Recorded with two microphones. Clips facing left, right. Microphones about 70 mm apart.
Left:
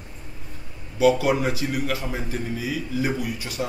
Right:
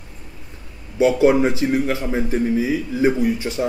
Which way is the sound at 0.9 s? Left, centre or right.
Right.